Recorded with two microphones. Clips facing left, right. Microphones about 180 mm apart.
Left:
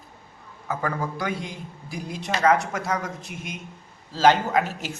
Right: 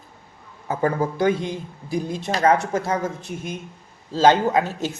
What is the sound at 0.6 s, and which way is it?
A man's voice, 25° right (ahead or behind).